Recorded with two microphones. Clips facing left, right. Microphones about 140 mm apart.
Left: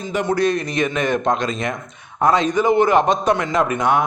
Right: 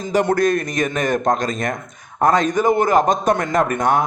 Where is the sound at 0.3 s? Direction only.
50° right (ahead or behind).